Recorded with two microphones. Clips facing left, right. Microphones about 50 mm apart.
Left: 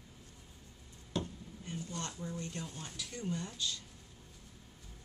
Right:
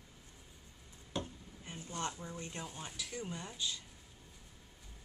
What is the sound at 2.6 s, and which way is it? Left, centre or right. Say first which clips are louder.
Speech: even; centre.